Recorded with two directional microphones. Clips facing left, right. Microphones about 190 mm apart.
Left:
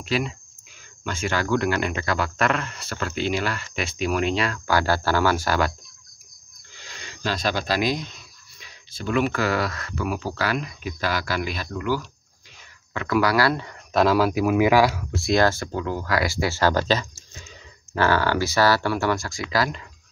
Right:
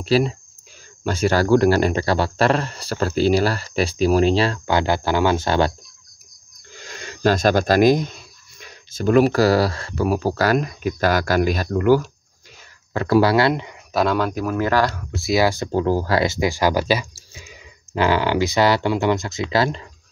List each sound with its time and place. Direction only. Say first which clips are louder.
0.0 s a man's voice: right 7 dB; 35° right (ahead or behind)
6.7 s a sound: right 7 dB; 50° right (ahead or behind)
8.5 s speech: right 8 dB; 45° right (ahead or behind)
12.9 s speech: right 5 dB; 35° right (ahead or behind)
13.9 s speech: left 1 dB; 5° left (ahead or behind)
15.7 s speech: right 6 dB; 35° right (ahead or behind)